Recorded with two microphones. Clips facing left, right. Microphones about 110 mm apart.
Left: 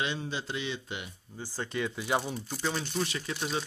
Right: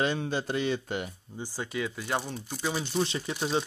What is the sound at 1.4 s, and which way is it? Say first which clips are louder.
Speech: right 1 dB; 15° right (ahead or behind).